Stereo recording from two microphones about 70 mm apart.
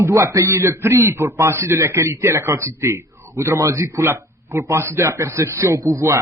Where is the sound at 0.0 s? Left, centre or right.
Right.